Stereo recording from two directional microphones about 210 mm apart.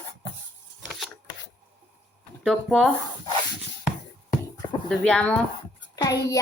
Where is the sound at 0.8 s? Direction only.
Centre (ahead or behind).